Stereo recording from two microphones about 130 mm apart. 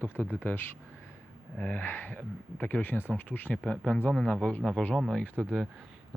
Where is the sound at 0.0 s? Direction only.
15° left (ahead or behind).